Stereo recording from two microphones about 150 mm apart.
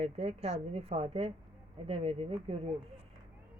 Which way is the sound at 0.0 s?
40° right (ahead or behind).